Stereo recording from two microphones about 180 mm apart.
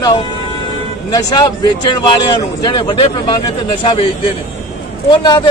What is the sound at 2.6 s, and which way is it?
Speech, 25° left (ahead or behind).